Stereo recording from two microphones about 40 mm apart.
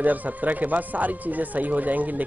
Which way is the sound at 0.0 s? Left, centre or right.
Right.